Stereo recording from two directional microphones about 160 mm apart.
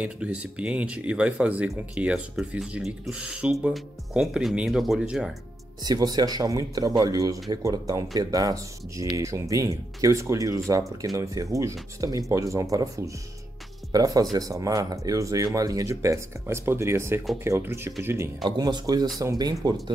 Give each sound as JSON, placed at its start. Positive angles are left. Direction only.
{"t": 0.0, "sound": "speech", "side_deg": -5}
{"t": 5.8, "sound": "speech", "side_deg": -25}